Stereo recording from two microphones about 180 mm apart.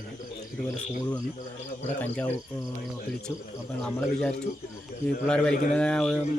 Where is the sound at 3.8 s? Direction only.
5° left (ahead or behind).